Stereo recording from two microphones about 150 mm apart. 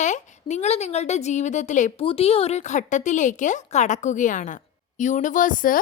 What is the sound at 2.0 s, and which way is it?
A woman's voice, 40° left (ahead or behind).